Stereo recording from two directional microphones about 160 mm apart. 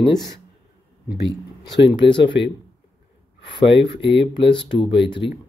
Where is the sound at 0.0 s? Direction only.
25° left (ahead or behind).